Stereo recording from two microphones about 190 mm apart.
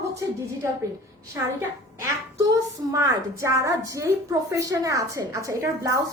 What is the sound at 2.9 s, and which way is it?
A woman's voice, 15° right (ahead or behind).